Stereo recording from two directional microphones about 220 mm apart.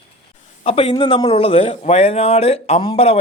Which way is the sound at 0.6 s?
25° left (ahead or behind).